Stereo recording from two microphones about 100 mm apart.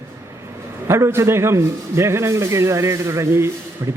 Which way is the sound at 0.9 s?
25° right (ahead or behind).